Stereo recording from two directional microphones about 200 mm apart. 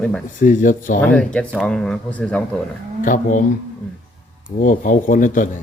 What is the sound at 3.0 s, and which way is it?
Speech, 40° left (ahead or behind).